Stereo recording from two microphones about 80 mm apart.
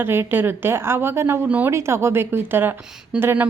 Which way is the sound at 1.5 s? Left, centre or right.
Centre.